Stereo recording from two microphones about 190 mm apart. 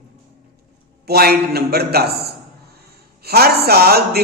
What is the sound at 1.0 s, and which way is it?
A man's voice, 55° right (ahead or behind).